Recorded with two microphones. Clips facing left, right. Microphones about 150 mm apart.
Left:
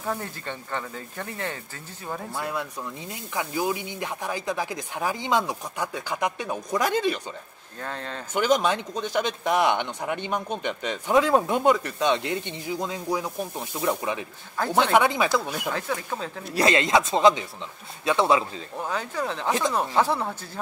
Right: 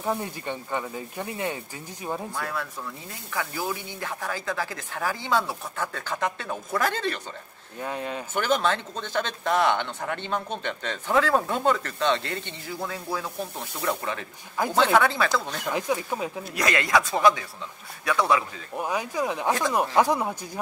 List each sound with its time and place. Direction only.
0.0 s speech: 15° right (ahead or behind)
2.3 s speech: 20° left (ahead or behind)
7.8 s speech: 10° right (ahead or behind)
8.4 s speech: 15° left (ahead or behind)
15.7 s speech: 15° right (ahead or behind)
16.5 s speech: 25° left (ahead or behind)
18.8 s speech: 15° right (ahead or behind)